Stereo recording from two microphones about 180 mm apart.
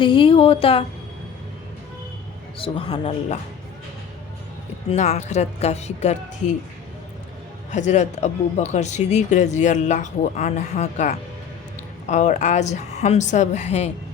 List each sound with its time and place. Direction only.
0.0 s speech: 30° left (ahead or behind)
2.6 s speech: 30° left (ahead or behind)
4.9 s speech: 35° left (ahead or behind)
7.7 s speech: 40° left (ahead or behind)